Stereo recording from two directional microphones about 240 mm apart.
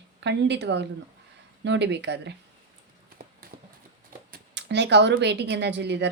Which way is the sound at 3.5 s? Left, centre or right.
Right.